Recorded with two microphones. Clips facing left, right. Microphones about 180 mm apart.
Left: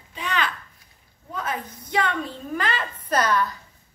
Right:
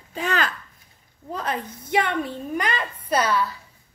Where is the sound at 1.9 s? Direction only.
20° right (ahead or behind).